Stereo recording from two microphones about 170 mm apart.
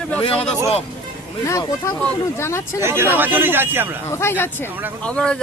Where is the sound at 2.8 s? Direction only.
15° right (ahead or behind).